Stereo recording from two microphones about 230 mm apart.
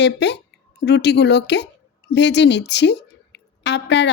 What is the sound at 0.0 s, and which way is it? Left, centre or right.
A woman's voice, left.